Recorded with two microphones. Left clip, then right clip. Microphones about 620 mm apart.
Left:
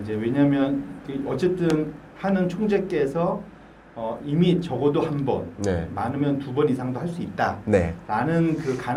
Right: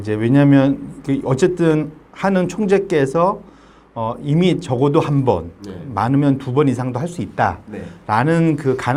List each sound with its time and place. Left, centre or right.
0.0 s speech: right
4.4 s speech: right
8.0 s speech: right